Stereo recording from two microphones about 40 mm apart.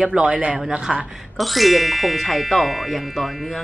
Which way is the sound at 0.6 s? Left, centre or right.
Centre.